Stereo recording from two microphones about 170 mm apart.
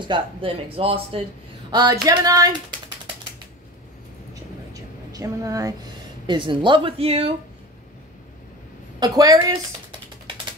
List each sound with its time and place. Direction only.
0.1 s speech: 30° right (ahead or behind)
1.7 s a woman's voice: 25° right (ahead or behind)
4.7 s a woman's voice: 20° right (ahead or behind); by 7.3 s 35° right (ahead or behind)
9.0 s a woman's voice: 20° right (ahead or behind)